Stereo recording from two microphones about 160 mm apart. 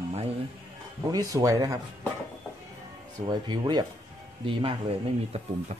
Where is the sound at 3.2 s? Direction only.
25° right (ahead or behind).